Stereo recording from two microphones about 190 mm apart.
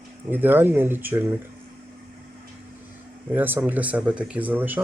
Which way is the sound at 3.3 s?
10° right (ahead or behind).